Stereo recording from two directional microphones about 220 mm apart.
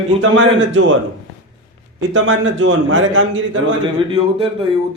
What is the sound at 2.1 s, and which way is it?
A man's voice, 60° right (ahead or behind).